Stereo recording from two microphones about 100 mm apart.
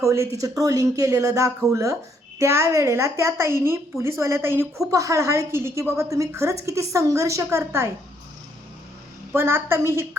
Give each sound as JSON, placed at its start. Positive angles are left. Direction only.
{"t": 0.0, "sound": "a woman's voice", "side_deg": -30}
{"t": 4.9, "sound": "a woman's voice", "side_deg": -35}
{"t": 9.3, "sound": "a woman's voice", "side_deg": -25}